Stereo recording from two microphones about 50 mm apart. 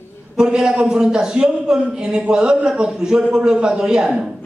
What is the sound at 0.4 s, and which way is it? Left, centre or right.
A man's voice, centre.